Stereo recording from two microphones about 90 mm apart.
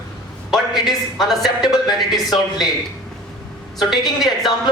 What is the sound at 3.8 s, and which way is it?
Speech, centre (ahead or behind).